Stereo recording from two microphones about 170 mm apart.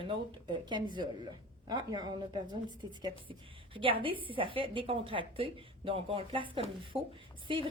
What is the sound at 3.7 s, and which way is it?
A woman's voice, 30° right (ahead or behind).